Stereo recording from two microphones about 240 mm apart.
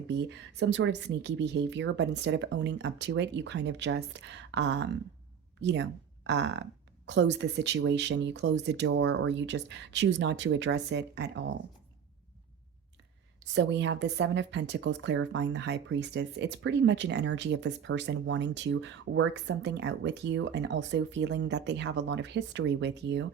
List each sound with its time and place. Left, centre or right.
0.1 s speech: right
13.4 s speech: right